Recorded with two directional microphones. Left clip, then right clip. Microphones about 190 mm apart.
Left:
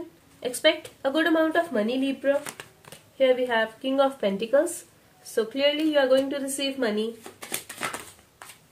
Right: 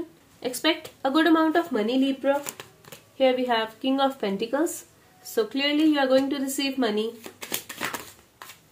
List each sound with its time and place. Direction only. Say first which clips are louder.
0.4 s speech: left 3 dB; 30° right (ahead or behind)
2.6 s a sound: even; 20° right (ahead or behind)
3.2 s a woman's voice: even; 35° right (ahead or behind)